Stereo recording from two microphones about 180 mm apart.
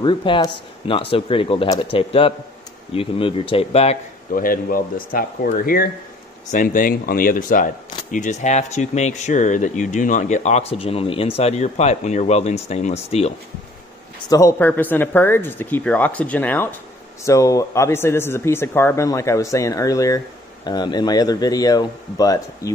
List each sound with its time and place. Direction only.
0.0 s speech: 25° left (ahead or behind)
4.3 s speech: 50° left (ahead or behind); by 13.3 s 35° left (ahead or behind)
14.3 s speech: 15° left (ahead or behind)